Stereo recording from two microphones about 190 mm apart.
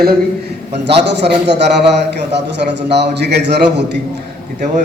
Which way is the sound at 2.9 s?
65° right (ahead or behind).